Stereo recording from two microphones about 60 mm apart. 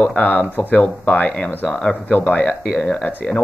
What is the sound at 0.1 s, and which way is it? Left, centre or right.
Speech, left.